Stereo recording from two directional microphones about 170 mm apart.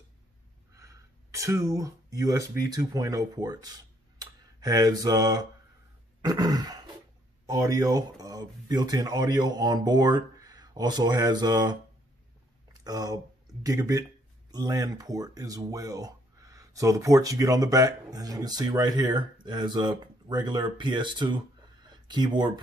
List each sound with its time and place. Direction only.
0.7 s a sound: 20° right (ahead or behind)
2.7 s speech: 20° right (ahead or behind)
6.2 s grunt: 20° right (ahead or behind)
7.4 s speech: 20° right (ahead or behind)
12.8 s speech: 20° right (ahead or behind)
21.8 s a sound: 25° right (ahead or behind)